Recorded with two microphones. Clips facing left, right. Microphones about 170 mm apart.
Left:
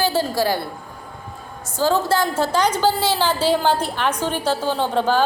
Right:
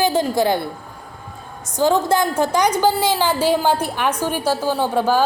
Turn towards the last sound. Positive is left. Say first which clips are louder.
# right 1 dB
turn(degrees=-10)  # may be behind; listen again after turning